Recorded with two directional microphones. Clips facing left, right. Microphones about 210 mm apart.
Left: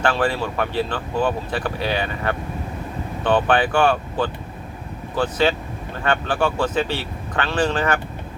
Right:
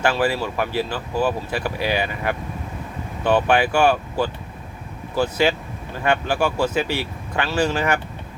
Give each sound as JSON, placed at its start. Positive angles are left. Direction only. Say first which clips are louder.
{"t": 0.0, "sound": "speech", "louder": "even", "side_deg": -10}